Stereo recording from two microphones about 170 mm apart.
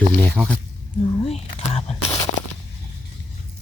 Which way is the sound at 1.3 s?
35° left (ahead or behind).